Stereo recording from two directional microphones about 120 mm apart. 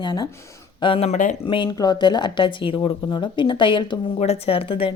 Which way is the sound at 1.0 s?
90° left.